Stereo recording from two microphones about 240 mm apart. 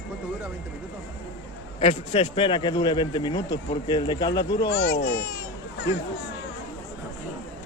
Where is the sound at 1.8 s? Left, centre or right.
Left.